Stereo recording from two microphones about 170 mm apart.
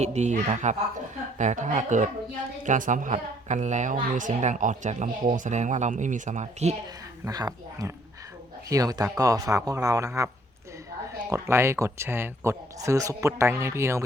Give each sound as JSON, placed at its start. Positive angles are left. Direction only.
{"t": 0.0, "sound": "speech", "side_deg": -45}
{"t": 7.3, "sound": "a man's voice", "side_deg": -20}
{"t": 11.3, "sound": "speech", "side_deg": -15}